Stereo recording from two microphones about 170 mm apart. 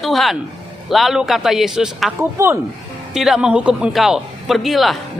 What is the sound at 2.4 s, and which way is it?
Speech, 15° right (ahead or behind).